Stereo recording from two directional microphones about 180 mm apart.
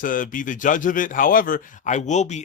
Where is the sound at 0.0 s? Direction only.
50° left (ahead or behind).